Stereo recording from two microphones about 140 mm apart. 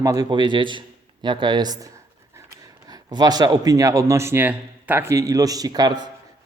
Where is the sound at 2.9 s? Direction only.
30° right (ahead or behind).